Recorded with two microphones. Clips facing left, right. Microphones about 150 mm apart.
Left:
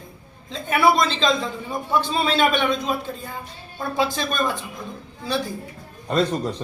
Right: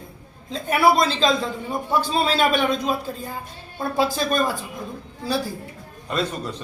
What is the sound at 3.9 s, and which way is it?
Speech, 5° right (ahead or behind).